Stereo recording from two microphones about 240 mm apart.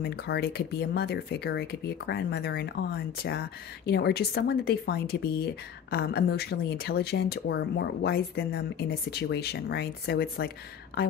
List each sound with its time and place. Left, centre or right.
0.0 s speech: left